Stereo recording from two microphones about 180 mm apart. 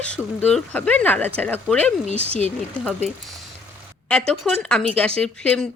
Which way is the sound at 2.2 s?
35° right (ahead or behind).